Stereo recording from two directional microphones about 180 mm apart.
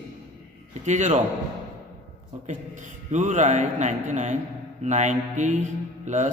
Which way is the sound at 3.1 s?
40° right (ahead or behind).